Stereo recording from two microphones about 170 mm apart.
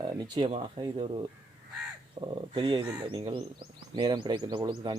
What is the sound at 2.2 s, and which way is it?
Speech, 30° right (ahead or behind).